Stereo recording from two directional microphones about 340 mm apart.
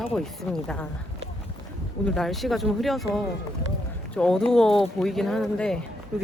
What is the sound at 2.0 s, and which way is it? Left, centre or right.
Speech, centre.